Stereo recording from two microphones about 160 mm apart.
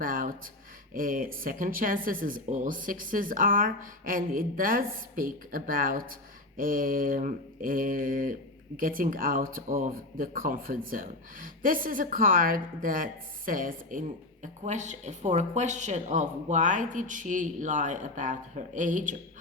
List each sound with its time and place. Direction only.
0.0 s speech: 60° right (ahead or behind)
14.4 s speech: 50° right (ahead or behind)